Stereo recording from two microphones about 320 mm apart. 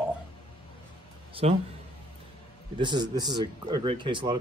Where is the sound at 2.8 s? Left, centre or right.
Centre.